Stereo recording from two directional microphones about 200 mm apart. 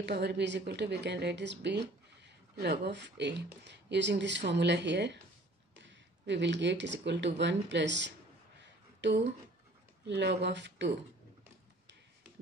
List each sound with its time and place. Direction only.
0.0 s a woman's voice: 55° right (ahead or behind)